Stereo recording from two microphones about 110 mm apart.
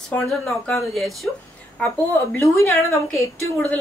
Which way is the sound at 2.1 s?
25° left (ahead or behind).